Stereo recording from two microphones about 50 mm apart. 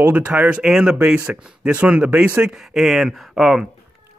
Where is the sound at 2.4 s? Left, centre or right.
Centre.